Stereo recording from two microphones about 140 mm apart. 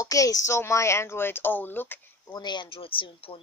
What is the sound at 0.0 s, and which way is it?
Speech, 25° left (ahead or behind).